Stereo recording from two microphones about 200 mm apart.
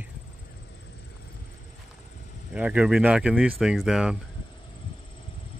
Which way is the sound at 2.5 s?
5° right (ahead or behind).